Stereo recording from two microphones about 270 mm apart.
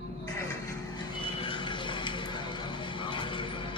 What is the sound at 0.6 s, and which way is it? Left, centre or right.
Music, centre.